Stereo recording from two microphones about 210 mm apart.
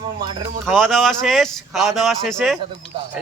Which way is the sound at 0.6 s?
Centre (ahead or behind).